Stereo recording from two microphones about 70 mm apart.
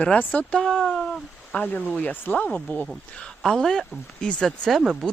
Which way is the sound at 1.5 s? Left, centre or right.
Left.